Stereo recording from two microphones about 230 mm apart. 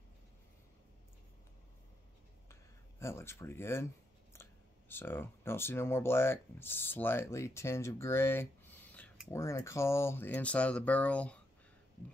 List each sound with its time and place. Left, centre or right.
3.0 s speech: centre